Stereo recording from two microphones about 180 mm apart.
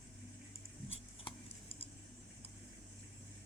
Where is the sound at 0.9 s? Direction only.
35° left (ahead or behind).